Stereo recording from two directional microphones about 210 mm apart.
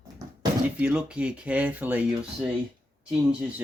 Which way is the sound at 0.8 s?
5° right (ahead or behind).